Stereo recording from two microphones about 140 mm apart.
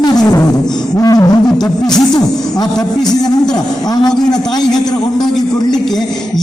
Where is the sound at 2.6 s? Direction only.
30° left (ahead or behind).